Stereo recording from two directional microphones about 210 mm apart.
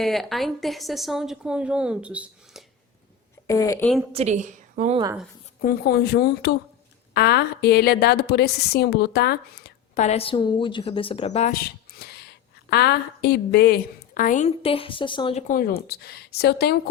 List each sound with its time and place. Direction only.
0.0 s a woman's voice: centre (ahead or behind)
3.4 s a woman's voice: 15° left (ahead or behind)
4.1 s a woman's voice: 30° right (ahead or behind)
5.6 s a woman's voice: 50° left (ahead or behind)
9.9 s a woman's voice: 35° left (ahead or behind); by 16.7 s 50° left (ahead or behind)